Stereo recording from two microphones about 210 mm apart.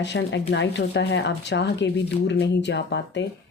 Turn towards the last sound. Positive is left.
turn(degrees=55)  # may be behind; listen again after turning